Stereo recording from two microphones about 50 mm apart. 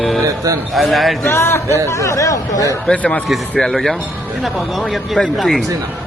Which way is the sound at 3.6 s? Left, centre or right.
Centre.